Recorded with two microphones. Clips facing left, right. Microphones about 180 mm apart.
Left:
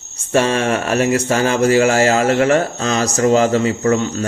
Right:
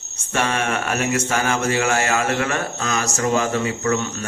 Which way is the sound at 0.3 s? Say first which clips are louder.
Left 7 dB; 30° left (ahead or behind).